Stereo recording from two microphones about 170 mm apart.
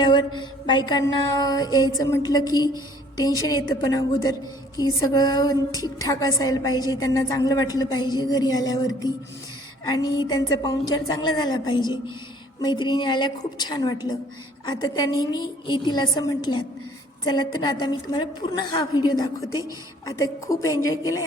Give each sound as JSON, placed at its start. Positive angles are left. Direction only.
{"t": 0.0, "sound": "a woman's voice", "side_deg": 25}